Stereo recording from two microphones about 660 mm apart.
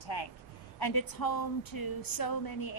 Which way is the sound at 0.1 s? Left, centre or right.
Left.